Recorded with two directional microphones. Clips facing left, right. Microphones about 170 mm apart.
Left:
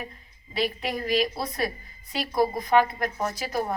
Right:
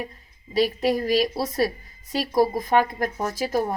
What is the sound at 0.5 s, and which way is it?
A woman's voice, 40° right (ahead or behind).